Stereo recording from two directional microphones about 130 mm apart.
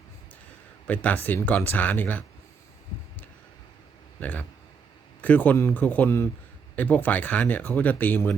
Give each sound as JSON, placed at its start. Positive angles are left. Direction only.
{"t": 0.9, "sound": "speech", "side_deg": 10}
{"t": 4.2, "sound": "speech", "side_deg": 15}
{"t": 5.5, "sound": "speech", "side_deg": 20}